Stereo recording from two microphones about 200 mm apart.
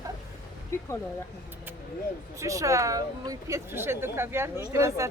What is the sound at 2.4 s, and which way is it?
A woman's voice, 15° right (ahead or behind).